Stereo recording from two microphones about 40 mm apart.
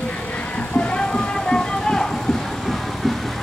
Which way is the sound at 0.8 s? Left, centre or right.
Left.